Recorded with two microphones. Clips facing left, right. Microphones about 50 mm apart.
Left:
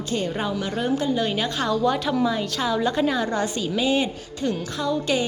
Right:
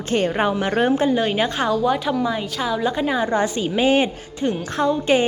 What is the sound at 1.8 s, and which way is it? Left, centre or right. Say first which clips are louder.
A woman's voice: right 2 dB; centre.